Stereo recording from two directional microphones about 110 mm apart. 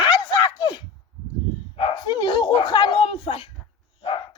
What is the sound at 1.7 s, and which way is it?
Speech, 50° left (ahead or behind).